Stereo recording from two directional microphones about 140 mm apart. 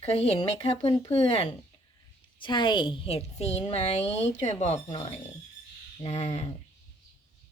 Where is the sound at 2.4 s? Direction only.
35° left (ahead or behind); by 6.5 s 50° left (ahead or behind).